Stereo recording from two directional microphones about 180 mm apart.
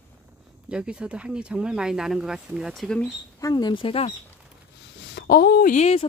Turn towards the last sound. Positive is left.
turn(degrees=35)  # may be behind; listen again after turning